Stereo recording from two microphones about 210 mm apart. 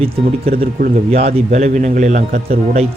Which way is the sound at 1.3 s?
35° right (ahead or behind).